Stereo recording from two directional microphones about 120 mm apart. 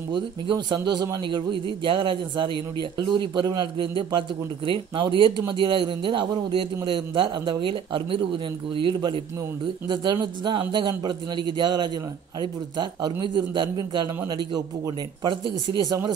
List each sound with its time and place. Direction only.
0.1 s a man's voice: 40° right (ahead or behind)